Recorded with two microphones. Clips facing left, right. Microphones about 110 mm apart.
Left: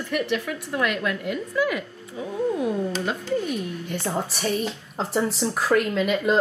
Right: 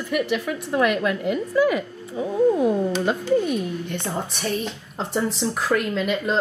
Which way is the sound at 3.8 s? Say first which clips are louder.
Left 1 dB; 5° left (ahead or behind).